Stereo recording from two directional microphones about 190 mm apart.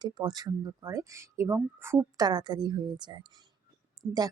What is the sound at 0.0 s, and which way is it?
A woman's voice, 20° right (ahead or behind).